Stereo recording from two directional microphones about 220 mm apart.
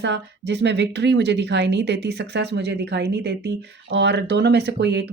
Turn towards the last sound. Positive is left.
turn(degrees=-50)  # may be behind; listen again after turning